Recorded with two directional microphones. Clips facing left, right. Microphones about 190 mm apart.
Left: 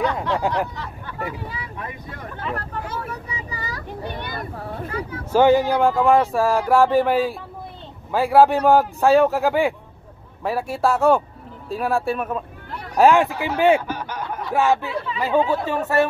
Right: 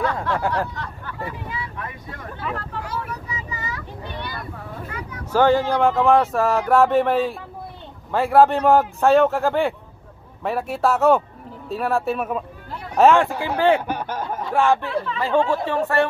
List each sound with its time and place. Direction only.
0.0 s speech: 20° left (ahead or behind)
2.8 s a sound: 25° left (ahead or behind); by 4.5 s 50° left (ahead or behind)
4.6 s a sound: 35° left (ahead or behind)
5.3 s speech: 15° left (ahead or behind)
5.8 s speech: centre (ahead or behind)
12.9 s speech: 10° left (ahead or behind)
13.9 s snicker: 50° right (ahead or behind)
14.5 s speech: 5° left (ahead or behind)